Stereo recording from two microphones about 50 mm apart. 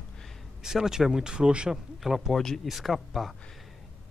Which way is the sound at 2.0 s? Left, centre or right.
Centre.